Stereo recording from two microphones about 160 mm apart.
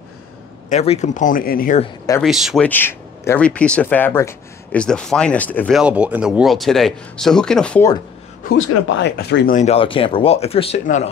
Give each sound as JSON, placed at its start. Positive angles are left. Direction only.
{"t": 0.7, "sound": "speech", "side_deg": 45}
{"t": 2.2, "sound": "speech", "side_deg": 0}
{"t": 2.6, "sound": "speech", "side_deg": 10}
{"t": 4.8, "sound": "speech", "side_deg": 5}
{"t": 5.7, "sound": "speech", "side_deg": -5}
{"t": 8.5, "sound": "speech", "side_deg": 60}
{"t": 9.0, "sound": "speech", "side_deg": 90}
{"t": 9.5, "sound": "speech", "side_deg": 50}
{"t": 9.8, "sound": "speech", "side_deg": 35}